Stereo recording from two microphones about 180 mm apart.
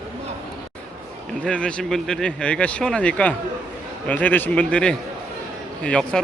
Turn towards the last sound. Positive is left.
turn(degrees=5)  # may be behind; listen again after turning